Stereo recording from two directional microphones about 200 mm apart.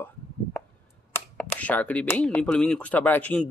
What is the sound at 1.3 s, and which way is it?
Speech, 5° left (ahead or behind).